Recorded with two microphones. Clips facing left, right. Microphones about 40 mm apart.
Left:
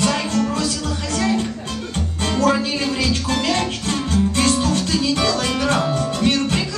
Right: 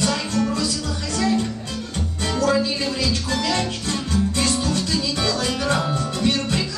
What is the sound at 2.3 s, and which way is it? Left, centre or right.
Music, left.